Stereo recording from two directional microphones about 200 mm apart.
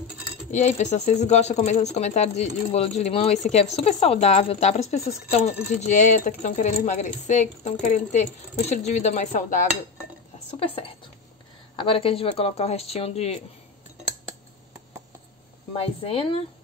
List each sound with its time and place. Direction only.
0.5 s speech: 35° left (ahead or behind)
15.8 s speech: 30° left (ahead or behind)